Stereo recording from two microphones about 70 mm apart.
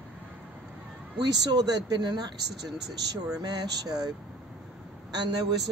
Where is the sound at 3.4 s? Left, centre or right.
Right.